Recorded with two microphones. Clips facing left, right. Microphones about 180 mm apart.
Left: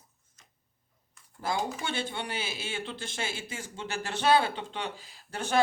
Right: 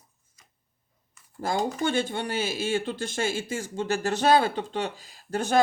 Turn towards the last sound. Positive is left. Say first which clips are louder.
# right 5 dB
turn(degrees=-45)  # may be behind; listen again after turning